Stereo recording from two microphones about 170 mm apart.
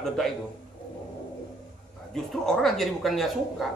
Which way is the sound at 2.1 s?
Centre (ahead or behind).